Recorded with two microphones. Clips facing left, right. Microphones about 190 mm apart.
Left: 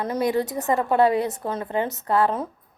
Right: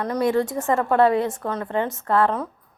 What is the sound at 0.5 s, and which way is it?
Speech, 20° left (ahead or behind).